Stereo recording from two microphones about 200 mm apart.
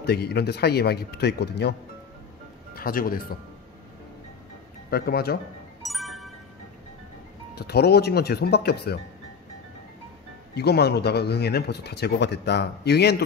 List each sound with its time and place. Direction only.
0.0 s speech: 55° left (ahead or behind)
2.7 s speech: 45° left (ahead or behind)
4.9 s speech: 50° left (ahead or behind)
5.8 s music: centre (ahead or behind)
7.5 s speech: 55° left (ahead or behind)
10.5 s speech: 55° left (ahead or behind)